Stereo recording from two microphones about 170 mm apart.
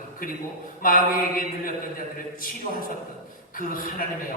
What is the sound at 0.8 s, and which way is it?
Speech, 55° left (ahead or behind).